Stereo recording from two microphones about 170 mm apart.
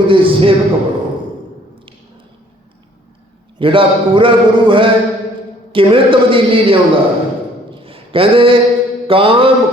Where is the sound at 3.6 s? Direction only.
30° right (ahead or behind).